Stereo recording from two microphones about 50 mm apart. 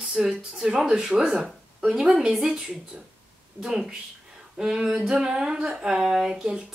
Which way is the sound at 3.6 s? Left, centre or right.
Centre.